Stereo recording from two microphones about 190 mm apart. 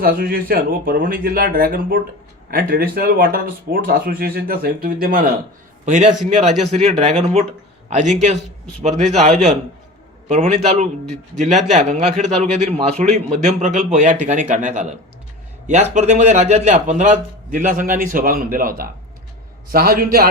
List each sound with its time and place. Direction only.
0.0 s a man's voice: 50° right (ahead or behind)